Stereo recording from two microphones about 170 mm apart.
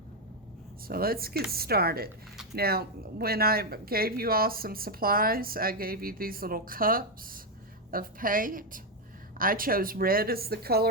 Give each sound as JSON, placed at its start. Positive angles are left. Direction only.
{"t": 0.9, "sound": "speech", "side_deg": -60}